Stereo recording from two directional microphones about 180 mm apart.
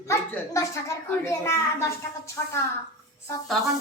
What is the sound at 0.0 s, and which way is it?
A child's voice, 15° left (ahead or behind).